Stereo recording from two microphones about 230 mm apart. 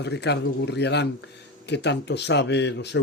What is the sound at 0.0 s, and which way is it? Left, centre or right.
Speech, left.